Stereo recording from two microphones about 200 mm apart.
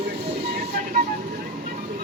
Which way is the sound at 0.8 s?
40° right (ahead or behind).